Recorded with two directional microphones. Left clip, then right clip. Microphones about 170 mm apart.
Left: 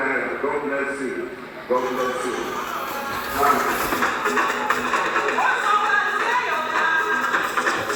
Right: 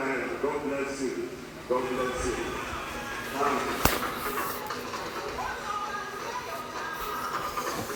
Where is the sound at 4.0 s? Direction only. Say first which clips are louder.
Left 11 dB; 90° left.